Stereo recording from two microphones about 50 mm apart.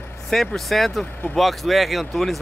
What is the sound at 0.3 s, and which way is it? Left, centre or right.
Speech, centre.